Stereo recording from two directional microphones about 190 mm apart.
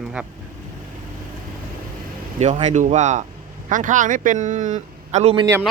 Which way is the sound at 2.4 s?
35° right (ahead or behind).